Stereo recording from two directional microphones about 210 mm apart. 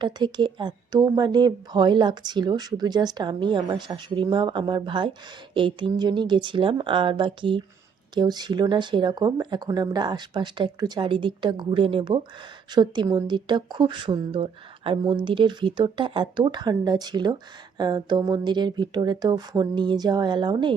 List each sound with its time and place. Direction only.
0.0 s a woman's voice: 20° right (ahead or behind)